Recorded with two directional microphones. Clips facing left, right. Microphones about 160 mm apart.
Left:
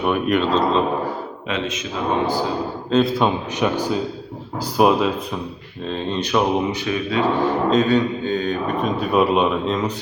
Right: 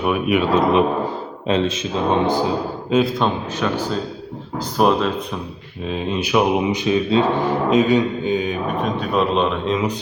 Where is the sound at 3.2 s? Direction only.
10° left (ahead or behind).